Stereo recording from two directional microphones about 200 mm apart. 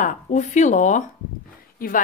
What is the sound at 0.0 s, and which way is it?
A woman's voice, 35° left (ahead or behind).